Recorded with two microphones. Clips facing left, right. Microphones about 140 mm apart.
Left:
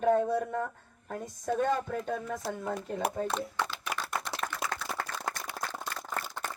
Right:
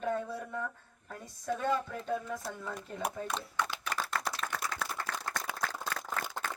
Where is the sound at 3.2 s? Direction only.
40° left (ahead or behind).